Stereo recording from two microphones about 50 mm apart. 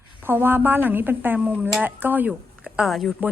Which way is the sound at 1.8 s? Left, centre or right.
Right.